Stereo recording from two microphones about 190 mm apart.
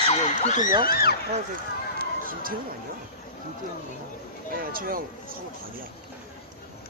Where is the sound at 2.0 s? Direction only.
50° right (ahead or behind).